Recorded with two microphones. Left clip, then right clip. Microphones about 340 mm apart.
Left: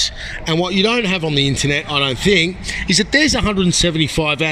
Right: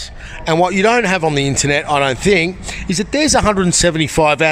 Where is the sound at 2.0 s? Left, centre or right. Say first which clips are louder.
Right 1 dB; centre.